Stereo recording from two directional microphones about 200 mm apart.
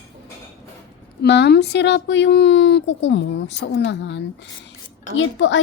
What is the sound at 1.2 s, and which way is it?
A woman's voice, 55° left (ahead or behind).